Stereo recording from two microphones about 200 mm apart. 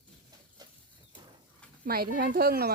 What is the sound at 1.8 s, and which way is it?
Speech, 50° right (ahead or behind).